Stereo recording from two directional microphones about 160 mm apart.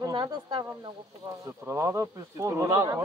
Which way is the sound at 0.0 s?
30° right (ahead or behind).